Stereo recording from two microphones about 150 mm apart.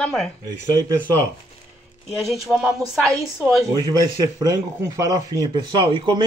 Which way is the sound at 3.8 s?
25° right (ahead or behind).